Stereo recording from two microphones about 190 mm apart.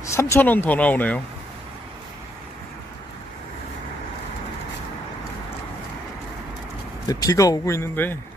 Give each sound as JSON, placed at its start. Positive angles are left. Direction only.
{"t": 0.0, "sound": "speech", "side_deg": 15}
{"t": 7.1, "sound": "speech", "side_deg": 20}